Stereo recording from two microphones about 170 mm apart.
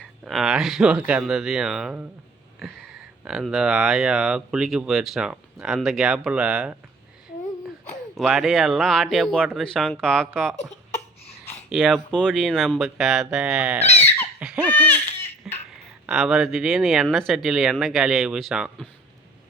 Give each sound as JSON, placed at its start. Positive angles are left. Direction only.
{"t": 0.0, "sound": "speech", "side_deg": 0}
{"t": 8.1, "sound": "speech", "side_deg": 0}
{"t": 10.6, "sound": "a sound", "side_deg": 40}
{"t": 11.7, "sound": "speech", "side_deg": 0}
{"t": 14.3, "sound": "laughter", "side_deg": -5}
{"t": 15.4, "sound": "a sound", "side_deg": -5}
{"t": 16.0, "sound": "speech", "side_deg": 0}